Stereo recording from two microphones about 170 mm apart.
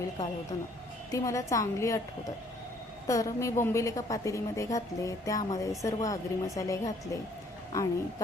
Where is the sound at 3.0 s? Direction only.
20° left (ahead or behind).